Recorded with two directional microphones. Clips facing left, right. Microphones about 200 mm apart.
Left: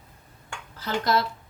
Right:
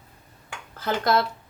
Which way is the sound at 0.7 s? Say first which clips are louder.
Right 2 dB; 50° right (ahead or behind).